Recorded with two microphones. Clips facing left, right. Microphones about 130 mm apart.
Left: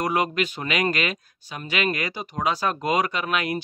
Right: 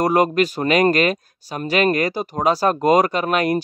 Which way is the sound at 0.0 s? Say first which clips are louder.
Right 7 dB; 40° right (ahead or behind).